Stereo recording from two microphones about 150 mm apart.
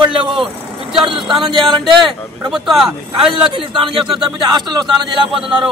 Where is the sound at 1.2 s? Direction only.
Centre (ahead or behind).